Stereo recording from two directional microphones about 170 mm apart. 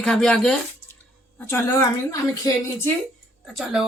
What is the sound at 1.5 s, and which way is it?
A woman's voice, 15° left (ahead or behind).